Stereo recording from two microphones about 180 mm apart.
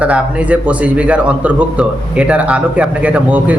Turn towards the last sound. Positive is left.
turn(degrees=-10)  # may be behind; listen again after turning